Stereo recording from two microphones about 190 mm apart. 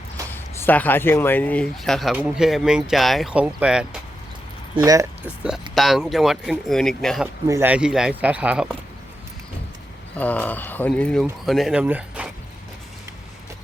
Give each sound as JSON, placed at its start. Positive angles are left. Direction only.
{"t": 0.3, "sound": "speech", "side_deg": 10}
{"t": 4.9, "sound": "speech", "side_deg": -15}
{"t": 5.7, "sound": "speech", "side_deg": 0}
{"t": 7.4, "sound": "speech", "side_deg": -15}
{"t": 10.2, "sound": "speech", "side_deg": 10}